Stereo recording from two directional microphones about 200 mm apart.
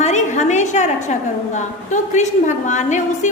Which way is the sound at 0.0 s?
35° left (ahead or behind).